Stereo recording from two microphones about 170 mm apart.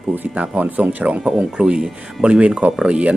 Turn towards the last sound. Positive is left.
turn(degrees=-5)  # may be behind; listen again after turning